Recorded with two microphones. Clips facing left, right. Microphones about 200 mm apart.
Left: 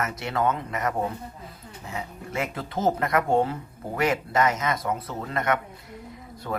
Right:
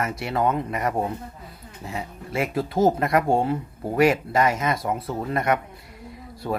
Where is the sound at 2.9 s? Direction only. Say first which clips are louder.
Right 2 dB; 25° right (ahead or behind).